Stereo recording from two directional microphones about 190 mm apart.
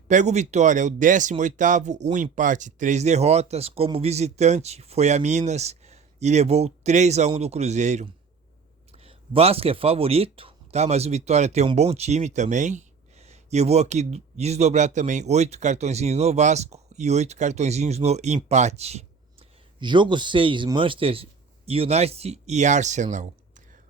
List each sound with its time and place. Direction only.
0.1 s speech: 40° right (ahead or behind)